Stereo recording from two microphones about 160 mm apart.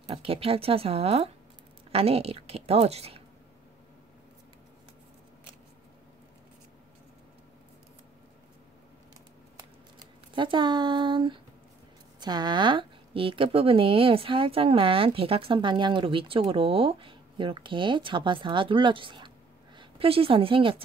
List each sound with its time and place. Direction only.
0.1 s a woman's voice: 35° right (ahead or behind)
9.6 s scissors: 30° right (ahead or behind)
12.2 s a woman's voice: 25° right (ahead or behind)